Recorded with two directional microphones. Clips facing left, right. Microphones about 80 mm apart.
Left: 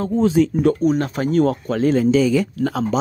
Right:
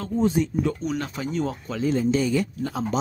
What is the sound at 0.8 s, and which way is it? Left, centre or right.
Speech, left.